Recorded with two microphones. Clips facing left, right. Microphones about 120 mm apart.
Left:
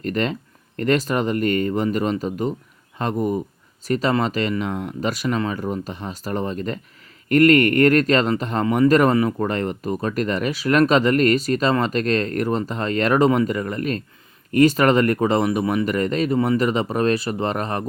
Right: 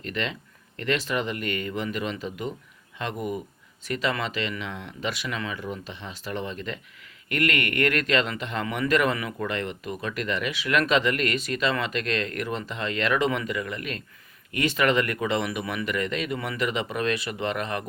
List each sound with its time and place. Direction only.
0.0 s speech: 45° left (ahead or behind)